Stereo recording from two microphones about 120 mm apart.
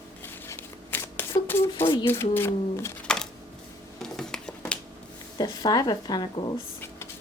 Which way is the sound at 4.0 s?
5° left (ahead or behind).